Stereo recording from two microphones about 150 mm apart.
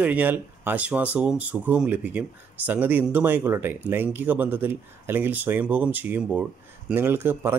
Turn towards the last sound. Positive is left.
turn(degrees=-15)  # may be behind; listen again after turning